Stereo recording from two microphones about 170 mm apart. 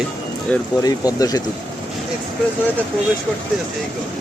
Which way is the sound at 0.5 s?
20° left (ahead or behind).